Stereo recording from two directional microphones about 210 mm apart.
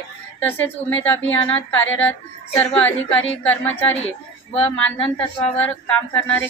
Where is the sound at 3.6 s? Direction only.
30° left (ahead or behind).